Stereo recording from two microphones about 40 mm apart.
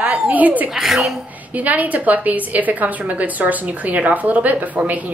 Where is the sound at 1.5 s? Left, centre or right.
Right.